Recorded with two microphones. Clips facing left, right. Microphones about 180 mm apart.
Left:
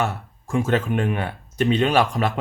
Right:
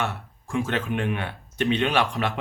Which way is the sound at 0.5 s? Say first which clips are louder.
Left 5 dB; 45° left (ahead or behind).